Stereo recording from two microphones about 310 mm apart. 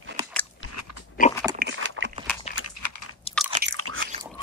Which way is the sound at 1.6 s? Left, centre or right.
Right.